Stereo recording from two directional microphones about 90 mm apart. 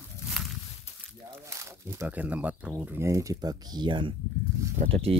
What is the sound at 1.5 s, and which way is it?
Crumpling, 35° right (ahead or behind).